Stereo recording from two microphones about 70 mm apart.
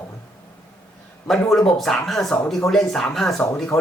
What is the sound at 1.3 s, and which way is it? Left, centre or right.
Speech, centre.